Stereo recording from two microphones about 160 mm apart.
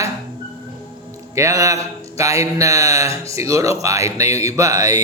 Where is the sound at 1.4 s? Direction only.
20° right (ahead or behind).